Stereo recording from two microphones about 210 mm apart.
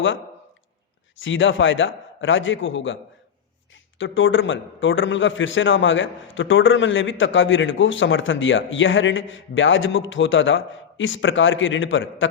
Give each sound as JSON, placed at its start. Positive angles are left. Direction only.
{"t": 1.2, "sound": "a man's voice", "side_deg": 65}